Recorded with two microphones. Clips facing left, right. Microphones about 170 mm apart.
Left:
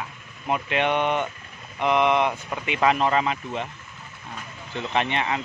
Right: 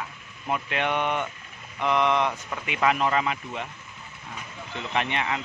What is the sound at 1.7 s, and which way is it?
Music, 20° left (ahead or behind).